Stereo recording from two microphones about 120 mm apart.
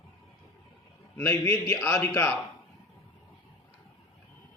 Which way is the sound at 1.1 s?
20° left (ahead or behind).